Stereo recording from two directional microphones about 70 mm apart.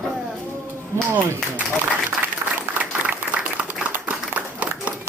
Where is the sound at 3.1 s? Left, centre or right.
Right.